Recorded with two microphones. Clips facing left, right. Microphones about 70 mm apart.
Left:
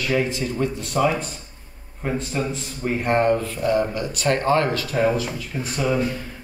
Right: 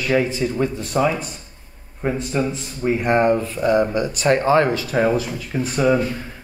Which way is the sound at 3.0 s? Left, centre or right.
Right.